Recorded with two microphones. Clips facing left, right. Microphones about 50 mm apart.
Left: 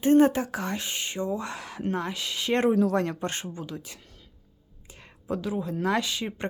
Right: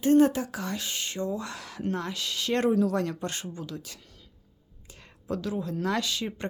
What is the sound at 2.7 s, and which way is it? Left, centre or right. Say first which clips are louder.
Speech: left 2 dB; left.